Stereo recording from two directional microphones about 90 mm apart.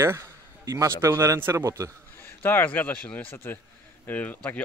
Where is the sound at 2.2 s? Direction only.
25° left (ahead or behind).